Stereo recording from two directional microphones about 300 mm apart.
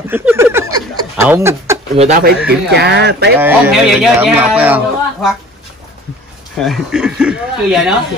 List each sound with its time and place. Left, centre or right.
0.1 s speech: centre
2.0 s a man's voice: right
2.7 s speech: right
3.3 s a man's voice: centre
6.6 s a man's voice: centre